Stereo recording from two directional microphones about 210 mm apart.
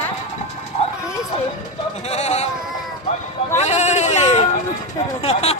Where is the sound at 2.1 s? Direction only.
30° left (ahead or behind).